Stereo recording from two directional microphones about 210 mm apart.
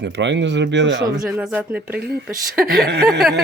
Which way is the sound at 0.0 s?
55° right (ahead or behind).